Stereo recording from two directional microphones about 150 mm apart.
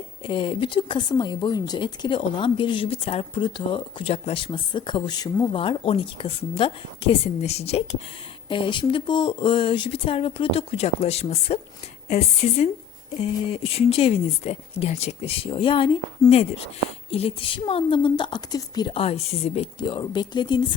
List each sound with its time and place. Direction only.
0.3 s speech: 35° left (ahead or behind)
13.7 s speech: 40° left (ahead or behind)